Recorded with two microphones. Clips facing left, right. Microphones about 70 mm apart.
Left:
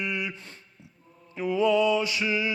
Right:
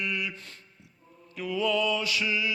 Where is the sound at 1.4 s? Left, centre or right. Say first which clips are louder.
Left 5 dB; left.